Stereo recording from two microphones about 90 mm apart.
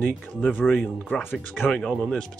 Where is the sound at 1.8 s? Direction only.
5° left (ahead or behind).